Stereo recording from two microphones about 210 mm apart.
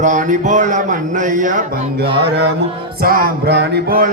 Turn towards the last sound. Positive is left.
turn(degrees=-50)  # may be behind; listen again after turning